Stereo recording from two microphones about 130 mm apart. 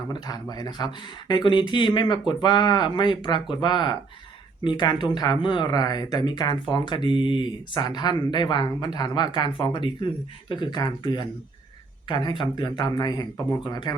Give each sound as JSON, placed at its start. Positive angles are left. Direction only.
{"t": 0.1, "sound": "speech", "side_deg": 30}